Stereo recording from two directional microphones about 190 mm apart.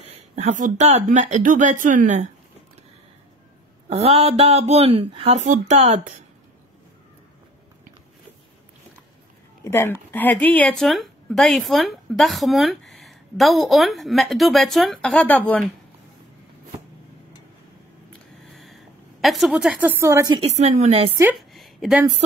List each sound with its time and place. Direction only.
0.0 s speech: 35° right (ahead or behind)
3.9 s speech: 30° right (ahead or behind)
9.7 s speech: 10° left (ahead or behind)
18.4 s a sound: centre (ahead or behind)
19.2 s speech: centre (ahead or behind)
20.3 s speech: 35° right (ahead or behind)
21.4 s a sound: centre (ahead or behind)